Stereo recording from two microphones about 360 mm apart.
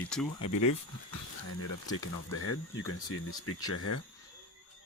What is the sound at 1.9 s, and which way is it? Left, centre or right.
Speech, left.